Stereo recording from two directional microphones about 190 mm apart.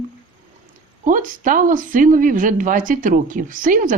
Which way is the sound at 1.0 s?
45° right (ahead or behind).